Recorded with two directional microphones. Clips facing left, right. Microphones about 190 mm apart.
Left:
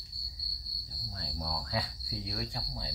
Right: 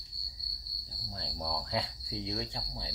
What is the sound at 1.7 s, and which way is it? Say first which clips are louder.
Cricket: right 1 dB; 25° right (ahead or behind).